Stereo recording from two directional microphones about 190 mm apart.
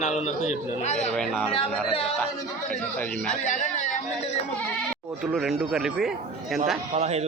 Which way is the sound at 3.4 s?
40° left (ahead or behind).